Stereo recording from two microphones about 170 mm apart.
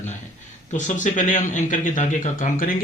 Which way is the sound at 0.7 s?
50° left (ahead or behind).